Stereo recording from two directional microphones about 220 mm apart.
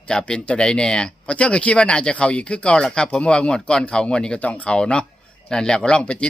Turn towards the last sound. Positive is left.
turn(degrees=5)  # may be behind; listen again after turning